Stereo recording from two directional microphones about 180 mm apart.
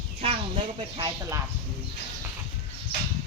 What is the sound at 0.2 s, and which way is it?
Speech, 30° right (ahead or behind).